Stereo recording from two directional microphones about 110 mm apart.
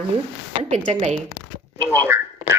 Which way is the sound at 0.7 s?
80° right.